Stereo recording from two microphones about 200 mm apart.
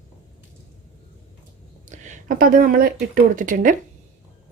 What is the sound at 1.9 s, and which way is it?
A woman's voice, 40° right (ahead or behind).